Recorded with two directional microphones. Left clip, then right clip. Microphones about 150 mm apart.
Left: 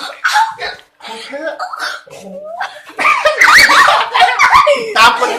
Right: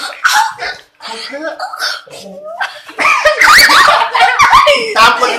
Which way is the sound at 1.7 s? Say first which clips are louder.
Right 3 dB; 55° left (ahead or behind).